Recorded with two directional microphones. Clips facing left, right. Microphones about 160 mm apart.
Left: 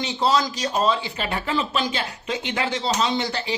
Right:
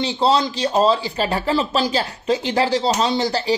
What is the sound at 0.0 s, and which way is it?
Speech, 30° right (ahead or behind).